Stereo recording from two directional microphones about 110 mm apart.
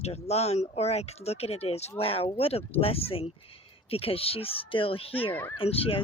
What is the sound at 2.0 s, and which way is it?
Speech, 60° left (ahead or behind).